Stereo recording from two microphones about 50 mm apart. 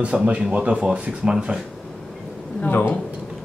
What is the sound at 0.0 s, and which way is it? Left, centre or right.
Speech, right.